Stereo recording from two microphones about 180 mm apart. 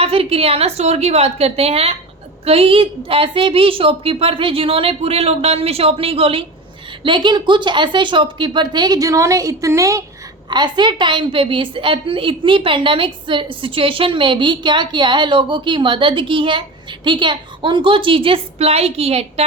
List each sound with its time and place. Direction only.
0.0 s a woman's voice: 30° right (ahead or behind)